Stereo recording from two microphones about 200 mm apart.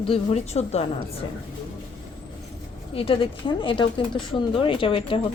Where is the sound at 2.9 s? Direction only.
25° left (ahead or behind).